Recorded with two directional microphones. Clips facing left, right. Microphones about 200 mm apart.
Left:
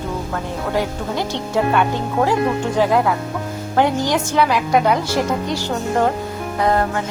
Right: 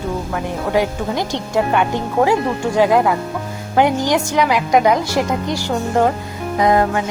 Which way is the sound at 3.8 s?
15° right (ahead or behind).